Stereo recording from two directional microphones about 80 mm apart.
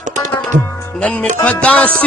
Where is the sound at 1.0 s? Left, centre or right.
Centre.